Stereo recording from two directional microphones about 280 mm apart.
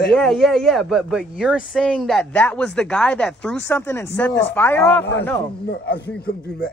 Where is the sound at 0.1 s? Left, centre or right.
Centre.